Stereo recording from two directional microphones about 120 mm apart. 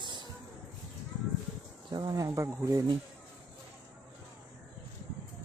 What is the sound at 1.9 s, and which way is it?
Speech, 35° right (ahead or behind).